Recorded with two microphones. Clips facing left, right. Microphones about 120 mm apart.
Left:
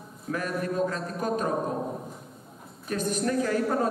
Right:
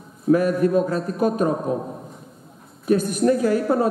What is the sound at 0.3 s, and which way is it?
Speech, 10° right (ahead or behind).